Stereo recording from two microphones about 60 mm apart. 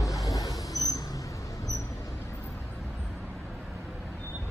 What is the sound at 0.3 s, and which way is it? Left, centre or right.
Vehicle, left.